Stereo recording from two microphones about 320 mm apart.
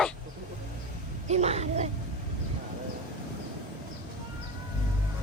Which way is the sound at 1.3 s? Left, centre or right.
Centre.